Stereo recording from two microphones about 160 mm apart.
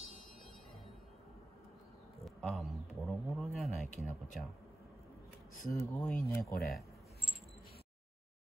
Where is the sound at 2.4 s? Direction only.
Centre (ahead or behind).